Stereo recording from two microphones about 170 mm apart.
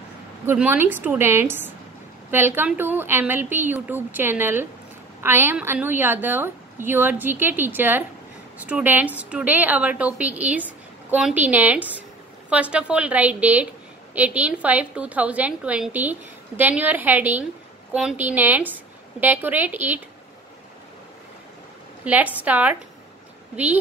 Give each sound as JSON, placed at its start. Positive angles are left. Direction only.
{"t": 0.5, "sound": "a woman's voice", "side_deg": -10}
{"t": 22.0, "sound": "a woman's voice", "side_deg": -10}